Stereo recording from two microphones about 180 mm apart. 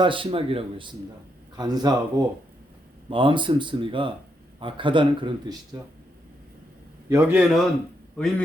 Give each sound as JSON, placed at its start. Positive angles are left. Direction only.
{"t": 0.0, "sound": "speech", "side_deg": -25}
{"t": 3.1, "sound": "speech", "side_deg": -30}
{"t": 7.1, "sound": "a man's voice", "side_deg": -10}